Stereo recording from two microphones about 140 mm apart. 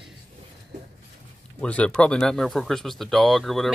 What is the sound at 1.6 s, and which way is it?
Speech, 10° left (ahead or behind).